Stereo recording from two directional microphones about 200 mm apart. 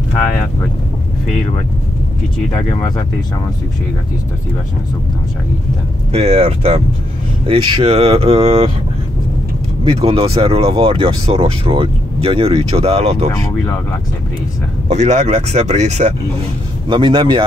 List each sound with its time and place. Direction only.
6.1 s speech: 30° right (ahead or behind)
9.9 s speech: 30° right (ahead or behind)
14.9 s speech: 35° right (ahead or behind)